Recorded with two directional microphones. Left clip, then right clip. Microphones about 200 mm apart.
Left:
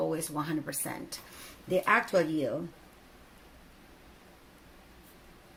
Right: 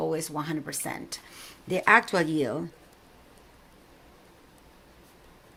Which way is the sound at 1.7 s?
50° right (ahead or behind).